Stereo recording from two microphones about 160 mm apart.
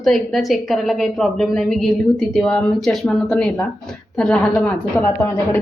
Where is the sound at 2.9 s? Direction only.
5° left (ahead or behind).